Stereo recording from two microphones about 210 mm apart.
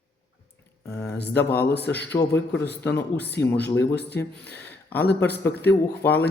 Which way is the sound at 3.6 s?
50° left (ahead or behind).